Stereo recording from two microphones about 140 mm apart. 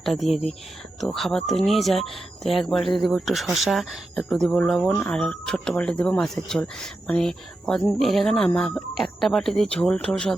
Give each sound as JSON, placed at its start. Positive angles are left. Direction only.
{"t": 0.0, "sound": "speech", "side_deg": 0}